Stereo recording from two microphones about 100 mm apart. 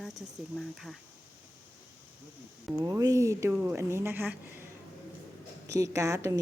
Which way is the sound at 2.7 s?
35° right (ahead or behind).